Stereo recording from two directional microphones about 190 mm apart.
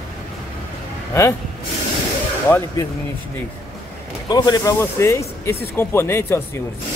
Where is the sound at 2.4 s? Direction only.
15° left (ahead or behind).